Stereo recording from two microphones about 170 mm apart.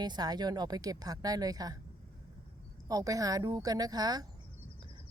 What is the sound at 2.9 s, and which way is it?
Speech, 20° right (ahead or behind).